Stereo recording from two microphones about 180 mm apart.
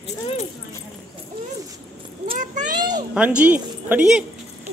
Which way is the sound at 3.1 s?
5° right (ahead or behind).